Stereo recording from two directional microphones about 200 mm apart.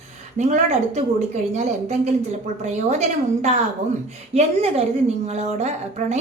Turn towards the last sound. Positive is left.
turn(degrees=-35)  # may be behind; listen again after turning